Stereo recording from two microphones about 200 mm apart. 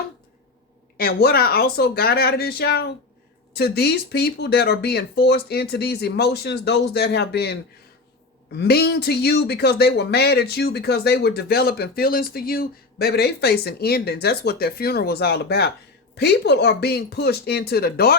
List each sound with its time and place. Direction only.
0.9 s speech: 50° left (ahead or behind)